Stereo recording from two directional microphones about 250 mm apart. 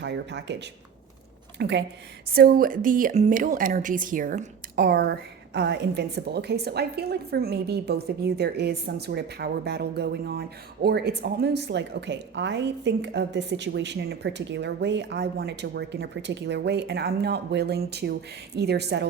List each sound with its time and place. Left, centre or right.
0.0 s a woman's voice: right